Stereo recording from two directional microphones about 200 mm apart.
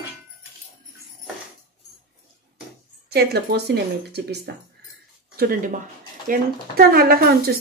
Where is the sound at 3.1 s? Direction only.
50° right (ahead or behind).